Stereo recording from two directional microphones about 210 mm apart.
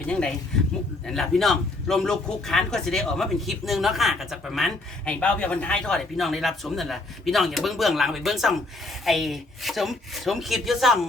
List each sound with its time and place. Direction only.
0.1 s a man's voice: 5° left (ahead or behind)